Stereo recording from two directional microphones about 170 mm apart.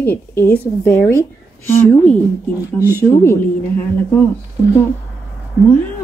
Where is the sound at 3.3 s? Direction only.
10° left (ahead or behind).